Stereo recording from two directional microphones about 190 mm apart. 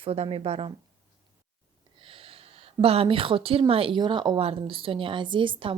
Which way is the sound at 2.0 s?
30° right (ahead or behind).